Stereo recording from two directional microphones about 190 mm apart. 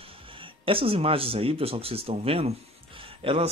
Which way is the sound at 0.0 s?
30° right (ahead or behind).